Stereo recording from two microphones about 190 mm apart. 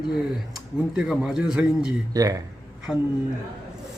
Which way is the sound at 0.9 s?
5° right (ahead or behind).